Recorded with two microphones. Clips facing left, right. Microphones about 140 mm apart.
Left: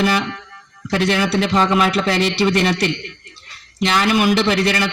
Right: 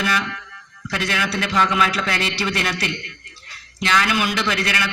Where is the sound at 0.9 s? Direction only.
35° left (ahead or behind).